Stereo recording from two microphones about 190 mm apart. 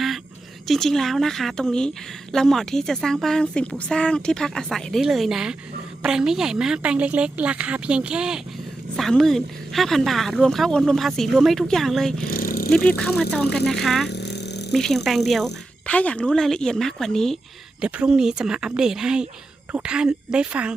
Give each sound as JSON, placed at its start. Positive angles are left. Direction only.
{"t": 0.7, "sound": "a woman's voice", "side_deg": 0}
{"t": 12.3, "sound": "vehicle", "side_deg": 50}
{"t": 13.0, "sound": "a woman's voice", "side_deg": 0}
{"t": 14.1, "sound": "a sound", "side_deg": 65}
{"t": 14.7, "sound": "a woman's voice", "side_deg": 0}